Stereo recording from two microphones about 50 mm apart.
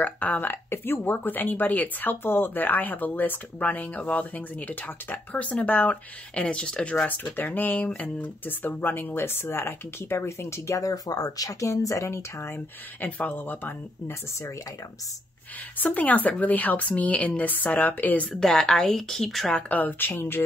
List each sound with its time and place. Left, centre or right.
0.0 s speech: left
7.1 s speech: left
9.2 s speech: left
12.5 s speech: left
15.8 s speech: left
18.3 s a woman's voice: centre
19.7 s speech: left